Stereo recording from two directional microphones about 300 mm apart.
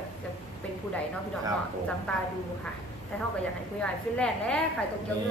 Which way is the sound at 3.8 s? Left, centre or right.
Centre.